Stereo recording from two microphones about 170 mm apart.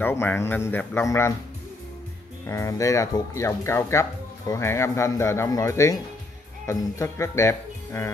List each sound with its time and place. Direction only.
0.0 s speech: 15° left (ahead or behind)
2.4 s speech: 15° left (ahead or behind)